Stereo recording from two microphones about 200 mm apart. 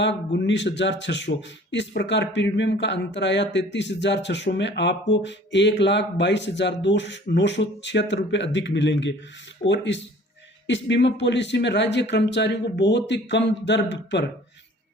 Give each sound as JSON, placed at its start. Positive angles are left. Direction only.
{"t": 0.0, "sound": "speech", "side_deg": 60}